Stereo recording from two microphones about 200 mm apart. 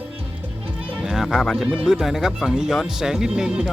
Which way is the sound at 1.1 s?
Centre (ahead or behind).